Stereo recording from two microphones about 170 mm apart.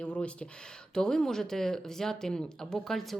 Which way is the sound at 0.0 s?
5° left (ahead or behind).